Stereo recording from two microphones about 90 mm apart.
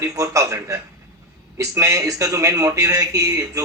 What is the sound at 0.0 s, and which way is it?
A man's voice, 35° right (ahead or behind).